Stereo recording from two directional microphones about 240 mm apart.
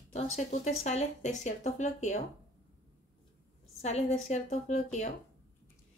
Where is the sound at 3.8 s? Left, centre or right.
Left.